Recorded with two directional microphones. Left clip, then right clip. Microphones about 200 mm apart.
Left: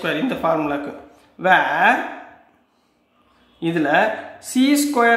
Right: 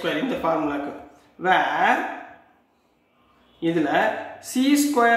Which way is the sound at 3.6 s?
35° left (ahead or behind).